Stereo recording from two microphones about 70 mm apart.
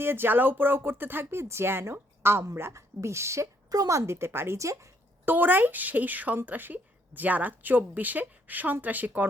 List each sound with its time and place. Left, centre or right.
0.0 s speech: right
5.2 s speech: right